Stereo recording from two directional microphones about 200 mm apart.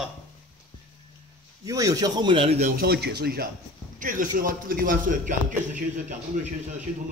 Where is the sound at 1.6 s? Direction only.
15° right (ahead or behind); by 5.3 s 45° right (ahead or behind).